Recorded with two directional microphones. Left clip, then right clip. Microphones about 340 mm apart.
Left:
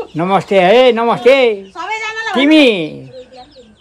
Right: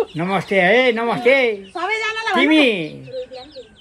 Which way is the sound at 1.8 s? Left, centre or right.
Right.